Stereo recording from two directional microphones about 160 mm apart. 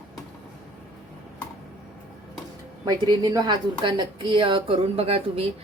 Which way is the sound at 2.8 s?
25° right (ahead or behind).